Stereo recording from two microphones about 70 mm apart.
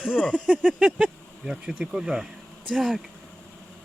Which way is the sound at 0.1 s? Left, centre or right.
Left.